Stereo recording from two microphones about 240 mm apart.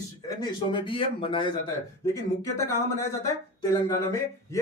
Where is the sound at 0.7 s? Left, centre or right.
Left.